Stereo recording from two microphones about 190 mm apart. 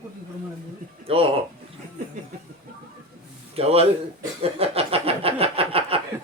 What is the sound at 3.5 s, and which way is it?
A man's voice, 30° right (ahead or behind).